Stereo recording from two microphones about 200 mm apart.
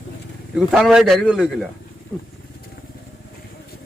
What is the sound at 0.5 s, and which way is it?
Speech, centre (ahead or behind).